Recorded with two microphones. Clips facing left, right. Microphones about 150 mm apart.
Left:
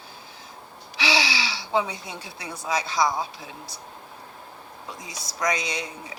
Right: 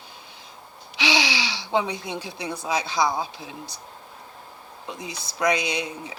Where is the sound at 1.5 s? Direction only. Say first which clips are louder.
Right 1 dB; 25° right (ahead or behind).